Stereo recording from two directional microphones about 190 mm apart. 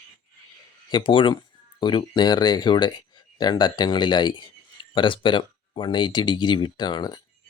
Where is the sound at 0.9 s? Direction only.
25° left (ahead or behind).